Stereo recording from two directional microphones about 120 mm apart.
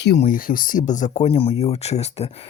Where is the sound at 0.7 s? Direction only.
90° left; by 2.2 s 65° left (ahead or behind).